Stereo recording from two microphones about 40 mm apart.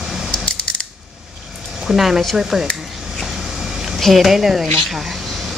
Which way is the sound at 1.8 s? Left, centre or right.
Centre.